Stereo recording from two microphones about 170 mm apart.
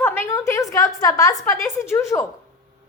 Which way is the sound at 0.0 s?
15° left (ahead or behind).